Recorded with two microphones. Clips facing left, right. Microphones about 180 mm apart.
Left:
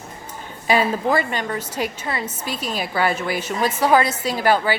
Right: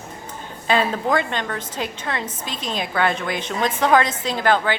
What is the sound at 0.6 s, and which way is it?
A woman's voice, 10° left (ahead or behind).